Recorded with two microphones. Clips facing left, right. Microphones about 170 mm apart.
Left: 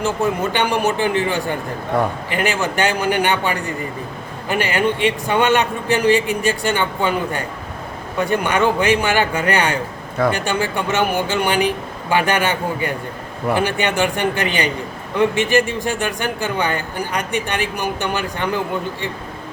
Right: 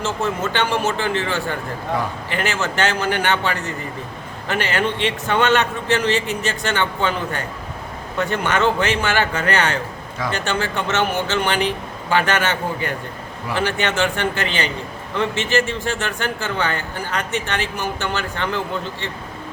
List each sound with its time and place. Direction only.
0.0 s a man's voice: 15° left (ahead or behind)